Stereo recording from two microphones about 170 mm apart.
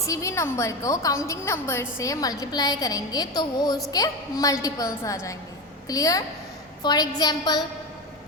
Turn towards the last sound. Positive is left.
turn(degrees=25)  # may be behind; listen again after turning